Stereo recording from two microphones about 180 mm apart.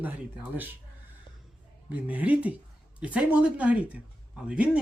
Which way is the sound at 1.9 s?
10° right (ahead or behind).